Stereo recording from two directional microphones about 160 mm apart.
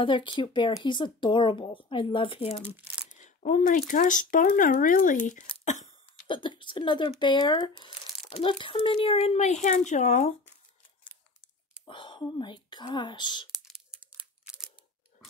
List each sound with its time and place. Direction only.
0.0 s speech: 30° left (ahead or behind)
3.2 s speech: 50° left (ahead or behind)
6.2 s a woman's voice: 30° left (ahead or behind); by 10.3 s 50° left (ahead or behind)
11.9 s speech: 30° left (ahead or behind)
13.7 s a sound: 5° right (ahead or behind)